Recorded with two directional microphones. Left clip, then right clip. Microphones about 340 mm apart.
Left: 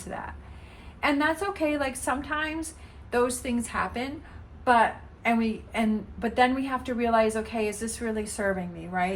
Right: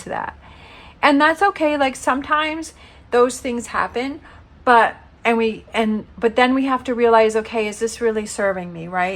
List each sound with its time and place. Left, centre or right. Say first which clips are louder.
1.0 s a woman's voice: right 11 dB; centre
5.2 s a woman's voice: right 9 dB; right